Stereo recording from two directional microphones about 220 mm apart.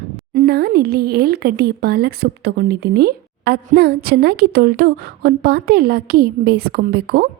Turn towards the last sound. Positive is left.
turn(degrees=-45)  # may be behind; listen again after turning